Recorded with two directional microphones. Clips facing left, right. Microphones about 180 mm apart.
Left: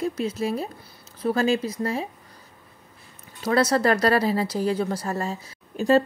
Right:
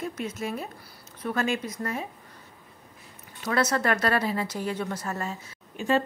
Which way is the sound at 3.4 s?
35° left (ahead or behind).